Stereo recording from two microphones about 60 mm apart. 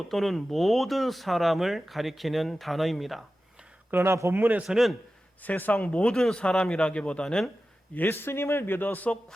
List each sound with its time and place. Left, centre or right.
0.1 s speech: centre
3.9 s a man's voice: right
4.6 s speech: centre
5.4 s a man's voice: left; by 7.5 s centre
7.9 s a man's voice: left